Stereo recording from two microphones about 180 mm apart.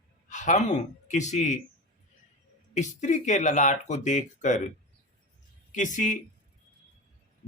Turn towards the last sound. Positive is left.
turn(degrees=45)  # may be behind; listen again after turning